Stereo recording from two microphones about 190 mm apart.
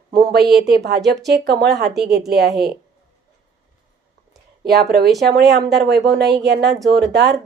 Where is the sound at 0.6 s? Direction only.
60° right (ahead or behind).